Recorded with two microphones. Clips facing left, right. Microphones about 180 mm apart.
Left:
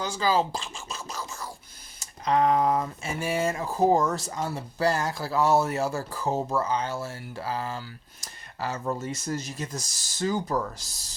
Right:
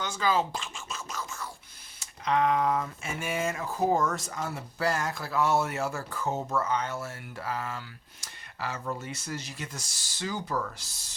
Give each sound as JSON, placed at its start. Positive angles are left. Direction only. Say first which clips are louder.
{"t": 0.0, "sound": "speech", "louder": "left 3 dB", "side_deg": 35}